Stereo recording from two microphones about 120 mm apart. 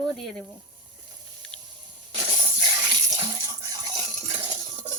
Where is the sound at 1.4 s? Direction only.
5° left (ahead or behind).